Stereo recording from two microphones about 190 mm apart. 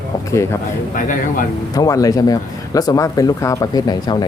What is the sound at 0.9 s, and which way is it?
Speech, 45° left (ahead or behind).